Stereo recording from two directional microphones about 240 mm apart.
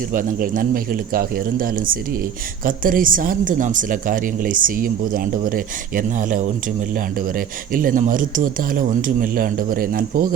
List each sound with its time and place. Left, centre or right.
0.1 s speech: right